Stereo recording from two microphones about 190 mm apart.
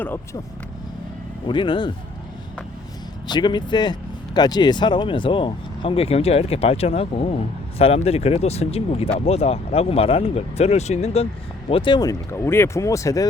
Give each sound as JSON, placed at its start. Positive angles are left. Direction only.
{"t": 1.5, "sound": "speech", "side_deg": 25}
{"t": 3.2, "sound": "speech", "side_deg": 25}